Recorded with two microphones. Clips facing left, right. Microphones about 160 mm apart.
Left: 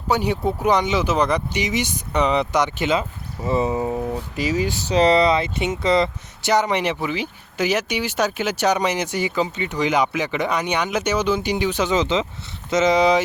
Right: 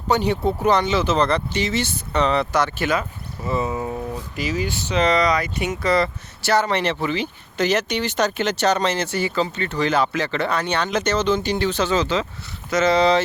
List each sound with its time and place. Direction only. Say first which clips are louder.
0.1 s speech: right 1 dB; 10° left (ahead or behind)
4.6 s speech: left 3 dB; 35° left (ahead or behind); by 13.2 s 15° left (ahead or behind)